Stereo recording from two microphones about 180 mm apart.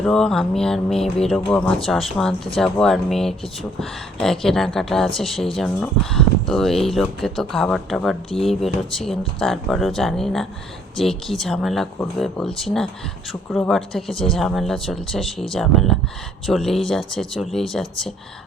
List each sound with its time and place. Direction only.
0.0 s speech: centre (ahead or behind)